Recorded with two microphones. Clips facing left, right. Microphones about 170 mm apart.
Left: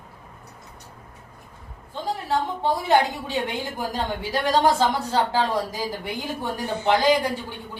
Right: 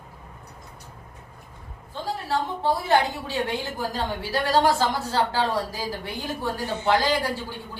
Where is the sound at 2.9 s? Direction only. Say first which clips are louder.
Left 4 dB; 15° left (ahead or behind).